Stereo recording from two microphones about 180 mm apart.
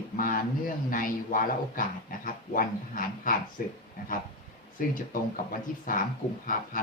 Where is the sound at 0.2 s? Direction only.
50° left (ahead or behind).